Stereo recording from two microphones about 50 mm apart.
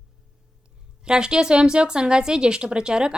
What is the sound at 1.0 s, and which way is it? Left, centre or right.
A woman's voice, centre.